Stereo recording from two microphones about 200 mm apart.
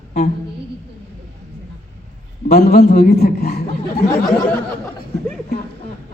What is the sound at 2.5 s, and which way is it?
A woman's voice, 50° left (ahead or behind).